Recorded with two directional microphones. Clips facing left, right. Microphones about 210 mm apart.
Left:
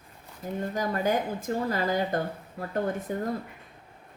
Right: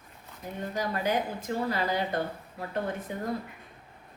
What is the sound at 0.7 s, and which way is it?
Speech, 50° left (ahead or behind).